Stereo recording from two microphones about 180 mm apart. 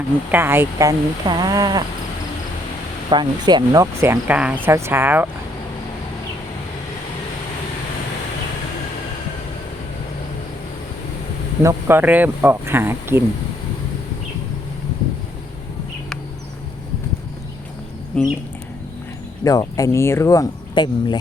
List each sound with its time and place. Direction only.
0.3 s speech: 10° right (ahead or behind)
3.1 s speech: 25° right (ahead or behind)
11.6 s speech: 15° right (ahead or behind)
18.1 s speech: 5° left (ahead or behind)
19.5 s speech: 20° left (ahead or behind)